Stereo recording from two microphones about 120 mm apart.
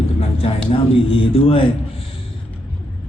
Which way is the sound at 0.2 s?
50° left (ahead or behind).